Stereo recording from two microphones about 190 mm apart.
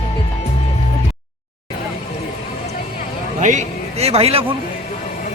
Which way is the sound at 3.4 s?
40° right (ahead or behind).